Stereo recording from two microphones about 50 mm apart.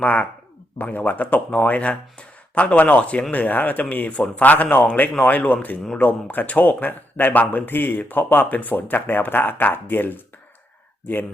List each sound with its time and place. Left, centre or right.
0.0 s speech: left
3.3 s speech: left